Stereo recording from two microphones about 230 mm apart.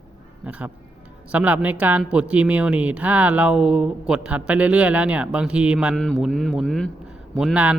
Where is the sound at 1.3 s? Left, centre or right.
Centre.